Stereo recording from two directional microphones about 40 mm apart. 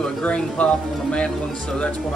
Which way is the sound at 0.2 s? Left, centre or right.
Left.